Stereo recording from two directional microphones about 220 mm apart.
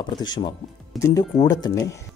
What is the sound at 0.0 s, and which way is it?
Speech, 20° left (ahead or behind).